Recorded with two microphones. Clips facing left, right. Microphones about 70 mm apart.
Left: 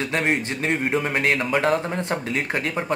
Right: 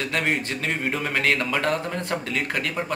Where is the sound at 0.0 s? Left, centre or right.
Left.